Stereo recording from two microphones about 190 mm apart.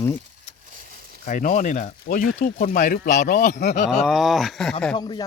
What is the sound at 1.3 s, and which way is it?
Speech, 45° left (ahead or behind).